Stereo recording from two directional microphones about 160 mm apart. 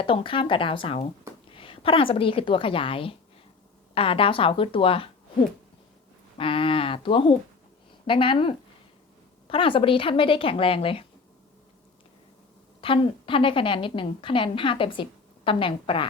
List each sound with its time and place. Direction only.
0.0 s a woman's voice: 35° left (ahead or behind)
6.3 s a woman's voice: 35° left (ahead or behind)
12.8 s a woman's voice: 35° left (ahead or behind)